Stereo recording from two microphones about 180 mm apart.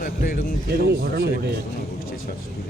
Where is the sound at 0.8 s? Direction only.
55° right (ahead or behind).